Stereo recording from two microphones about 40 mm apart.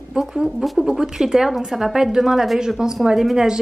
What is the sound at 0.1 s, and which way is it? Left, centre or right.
A woman's voice, centre.